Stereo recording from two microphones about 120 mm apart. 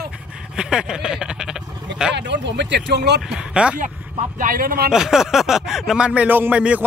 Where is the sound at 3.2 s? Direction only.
5° right (ahead or behind).